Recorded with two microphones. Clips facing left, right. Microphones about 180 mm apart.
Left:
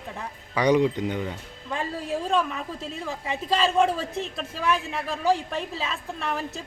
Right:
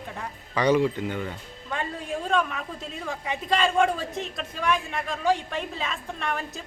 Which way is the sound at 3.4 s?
5° left (ahead or behind).